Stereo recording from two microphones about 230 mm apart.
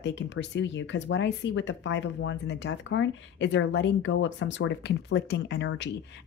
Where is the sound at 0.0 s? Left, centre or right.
Left.